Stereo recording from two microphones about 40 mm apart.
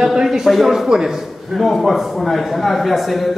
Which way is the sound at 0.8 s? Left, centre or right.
Centre.